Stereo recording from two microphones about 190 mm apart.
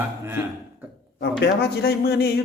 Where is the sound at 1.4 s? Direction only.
60° left (ahead or behind).